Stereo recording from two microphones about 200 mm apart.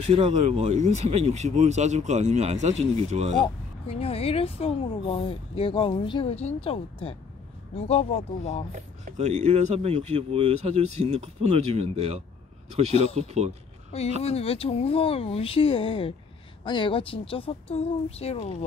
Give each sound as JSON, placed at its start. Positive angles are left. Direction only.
{"t": 0.0, "sound": "speech", "side_deg": -35}
{"t": 3.4, "sound": "speech", "side_deg": 30}
{"t": 8.7, "sound": "speech", "side_deg": -35}
{"t": 14.2, "sound": "speech", "side_deg": 30}